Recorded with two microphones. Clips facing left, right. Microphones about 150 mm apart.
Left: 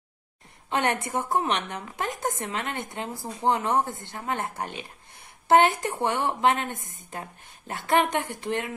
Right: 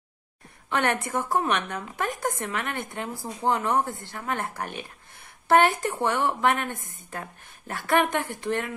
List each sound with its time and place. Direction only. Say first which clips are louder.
0.7 s speech: even; 20° left (ahead or behind)